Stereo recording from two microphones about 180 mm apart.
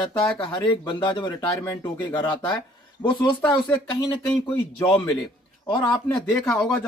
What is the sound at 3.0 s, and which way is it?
Speech, 5° left (ahead or behind).